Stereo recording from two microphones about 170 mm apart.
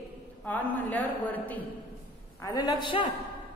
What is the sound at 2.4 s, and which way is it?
Speech, 20° left (ahead or behind).